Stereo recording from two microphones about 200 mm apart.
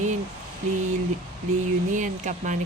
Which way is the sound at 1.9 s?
40° right (ahead or behind).